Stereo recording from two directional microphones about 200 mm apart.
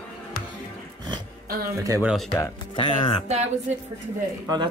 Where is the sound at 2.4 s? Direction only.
25° left (ahead or behind).